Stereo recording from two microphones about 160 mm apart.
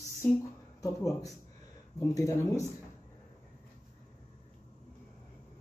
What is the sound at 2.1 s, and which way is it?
Speech, 20° left (ahead or behind).